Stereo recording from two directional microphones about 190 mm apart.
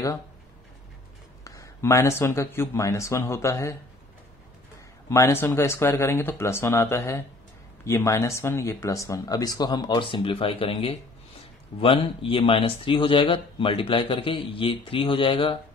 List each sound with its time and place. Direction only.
1.4 s a man's voice: 15° left (ahead or behind)
5.1 s a man's voice: 15° left (ahead or behind)